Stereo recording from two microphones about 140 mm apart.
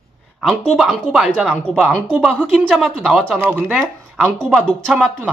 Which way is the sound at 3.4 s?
10° right (ahead or behind).